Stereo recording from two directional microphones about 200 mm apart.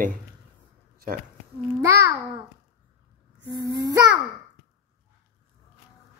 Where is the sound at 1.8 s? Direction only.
15° right (ahead or behind).